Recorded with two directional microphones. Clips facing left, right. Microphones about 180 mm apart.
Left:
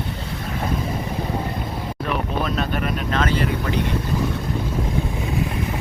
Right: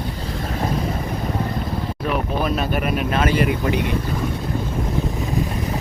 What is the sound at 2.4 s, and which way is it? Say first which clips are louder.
Speech: right 2 dB; 10° right (ahead or behind).